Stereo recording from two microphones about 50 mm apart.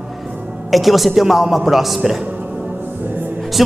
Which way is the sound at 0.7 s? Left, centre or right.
Centre.